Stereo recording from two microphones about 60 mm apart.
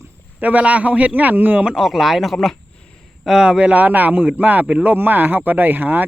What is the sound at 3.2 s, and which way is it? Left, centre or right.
Speech, centre.